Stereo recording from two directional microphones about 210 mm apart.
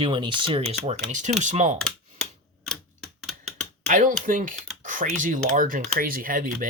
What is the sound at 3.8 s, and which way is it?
Speech, 35° right (ahead or behind).